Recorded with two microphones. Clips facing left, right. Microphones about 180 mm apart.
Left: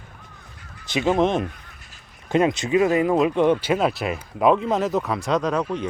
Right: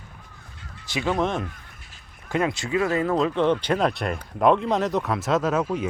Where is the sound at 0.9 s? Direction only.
20° left (ahead or behind).